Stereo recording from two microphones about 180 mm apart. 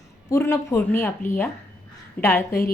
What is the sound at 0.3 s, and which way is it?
A woman's voice, 15° left (ahead or behind).